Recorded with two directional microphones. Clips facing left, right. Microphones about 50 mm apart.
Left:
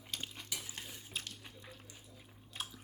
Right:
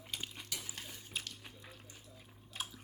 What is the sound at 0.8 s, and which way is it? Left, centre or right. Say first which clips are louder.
Water: even; centre.